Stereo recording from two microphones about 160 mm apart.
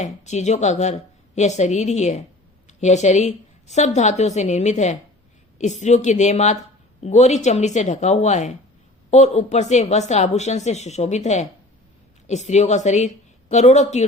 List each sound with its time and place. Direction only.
0.0 s a woman's voice: 45° left (ahead or behind)